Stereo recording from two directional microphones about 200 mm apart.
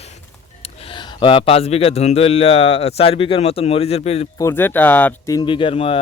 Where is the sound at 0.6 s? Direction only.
30° left (ahead or behind).